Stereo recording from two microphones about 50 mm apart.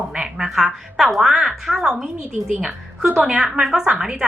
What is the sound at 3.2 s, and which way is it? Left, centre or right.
A woman's voice, centre.